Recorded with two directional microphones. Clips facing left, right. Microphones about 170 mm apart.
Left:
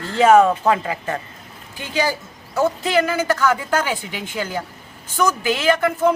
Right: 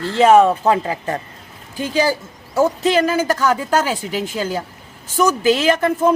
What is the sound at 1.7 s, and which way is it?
A woman's voice, 40° right (ahead or behind).